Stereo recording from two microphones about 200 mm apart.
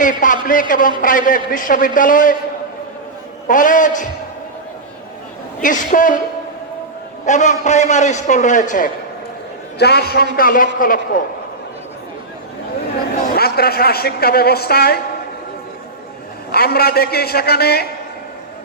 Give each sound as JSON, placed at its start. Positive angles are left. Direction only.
{"t": 0.0, "sound": "a man's voice", "side_deg": 40}
{"t": 3.4, "sound": "a man's voice", "side_deg": 40}
{"t": 5.6, "sound": "a man's voice", "side_deg": 40}
{"t": 7.3, "sound": "a man's voice", "side_deg": 35}
{"t": 9.7, "sound": "a woman's voice", "side_deg": 55}
{"t": 13.2, "sound": "a woman's voice", "side_deg": 50}
{"t": 16.5, "sound": "a woman's voice", "side_deg": 50}